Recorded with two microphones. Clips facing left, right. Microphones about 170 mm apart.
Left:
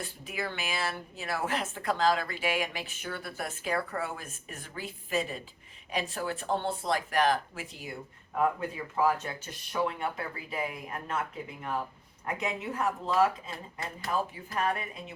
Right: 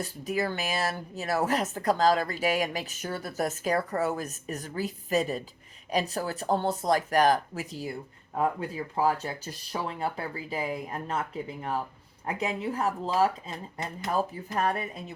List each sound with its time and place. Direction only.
0.0 s a woman's voice: 40° right (ahead or behind)
14.6 s a woman's voice: 35° right (ahead or behind)